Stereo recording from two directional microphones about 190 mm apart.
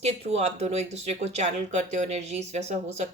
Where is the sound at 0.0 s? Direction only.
35° right (ahead or behind).